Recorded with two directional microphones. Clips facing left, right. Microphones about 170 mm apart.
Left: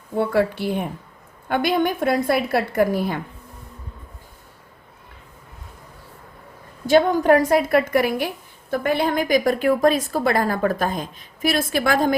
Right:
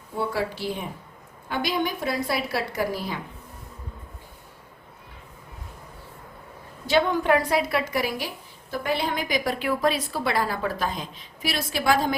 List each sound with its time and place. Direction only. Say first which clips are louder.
0.2 s a woman's voice: left 7 dB; 55° left (ahead or behind)
6.8 s a woman's voice: left 6 dB; 45° left (ahead or behind)